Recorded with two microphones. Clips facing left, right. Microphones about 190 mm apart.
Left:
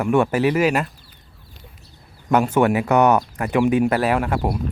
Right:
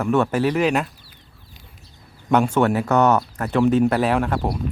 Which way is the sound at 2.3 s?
5° left (ahead or behind).